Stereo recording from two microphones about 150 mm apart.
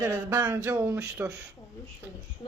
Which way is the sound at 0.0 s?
10° right (ahead or behind).